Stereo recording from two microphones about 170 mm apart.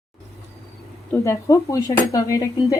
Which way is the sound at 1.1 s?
15° left (ahead or behind).